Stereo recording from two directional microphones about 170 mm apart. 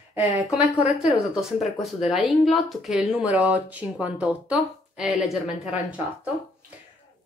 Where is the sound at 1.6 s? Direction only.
Centre (ahead or behind).